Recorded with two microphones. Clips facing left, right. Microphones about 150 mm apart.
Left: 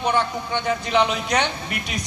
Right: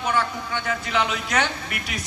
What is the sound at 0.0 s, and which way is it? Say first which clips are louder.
Speech: left 2 dB; 25° left (ahead or behind).